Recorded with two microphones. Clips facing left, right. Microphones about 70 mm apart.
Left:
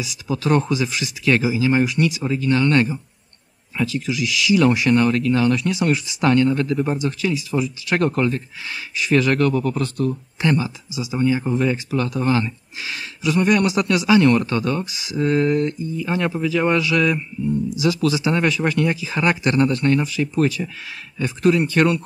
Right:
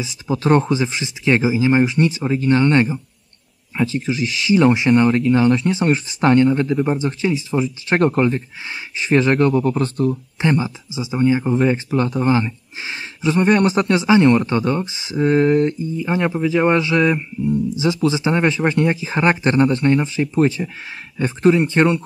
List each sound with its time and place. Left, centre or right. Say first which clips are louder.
0.0 s speech: right 3 dB; right
7.0 s speech: right 2 dB; right